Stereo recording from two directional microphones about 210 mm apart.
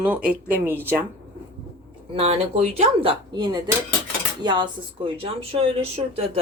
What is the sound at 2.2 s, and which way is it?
Speech, 30° right (ahead or behind).